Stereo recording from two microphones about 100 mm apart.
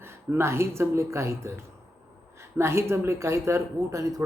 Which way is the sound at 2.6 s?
30° right (ahead or behind).